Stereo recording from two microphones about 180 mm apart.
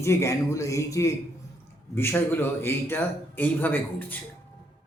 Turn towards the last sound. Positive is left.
turn(degrees=10)  # may be behind; listen again after turning